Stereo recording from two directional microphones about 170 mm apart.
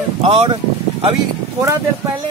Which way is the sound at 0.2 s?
30° right (ahead or behind).